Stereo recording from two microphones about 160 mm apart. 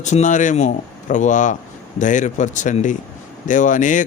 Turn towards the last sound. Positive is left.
turn(degrees=55)  # may be behind; listen again after turning